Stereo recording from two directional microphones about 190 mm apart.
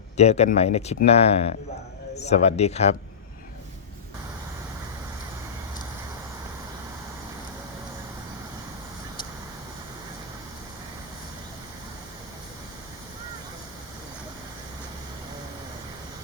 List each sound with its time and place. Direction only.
0.2 s speech: 35° left (ahead or behind)